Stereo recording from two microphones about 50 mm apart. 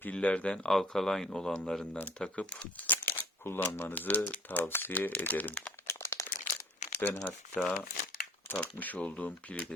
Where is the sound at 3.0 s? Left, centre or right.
Left.